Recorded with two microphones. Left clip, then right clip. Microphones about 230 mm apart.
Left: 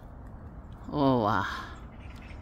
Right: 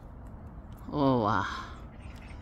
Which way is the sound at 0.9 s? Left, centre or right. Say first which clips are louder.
Left 1 dB; centre.